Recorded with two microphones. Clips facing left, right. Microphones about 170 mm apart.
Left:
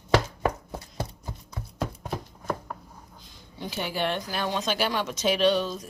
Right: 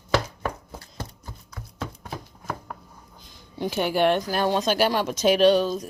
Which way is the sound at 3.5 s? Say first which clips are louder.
Right 7 dB; 55° right (ahead or behind).